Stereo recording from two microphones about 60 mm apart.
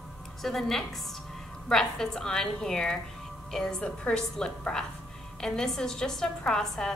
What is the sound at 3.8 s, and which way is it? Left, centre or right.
A woman's voice, centre.